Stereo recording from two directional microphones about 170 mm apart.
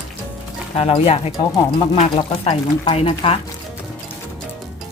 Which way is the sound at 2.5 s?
30° left (ahead or behind).